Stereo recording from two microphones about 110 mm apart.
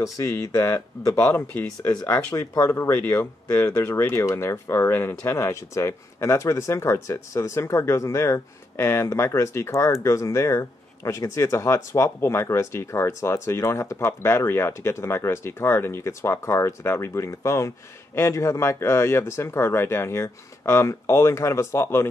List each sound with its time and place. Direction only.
0.0 s speech: 30° left (ahead or behind)